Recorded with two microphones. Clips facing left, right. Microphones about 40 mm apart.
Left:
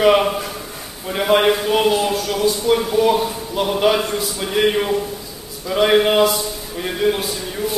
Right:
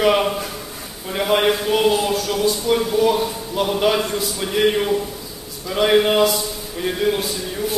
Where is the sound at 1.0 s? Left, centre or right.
Centre.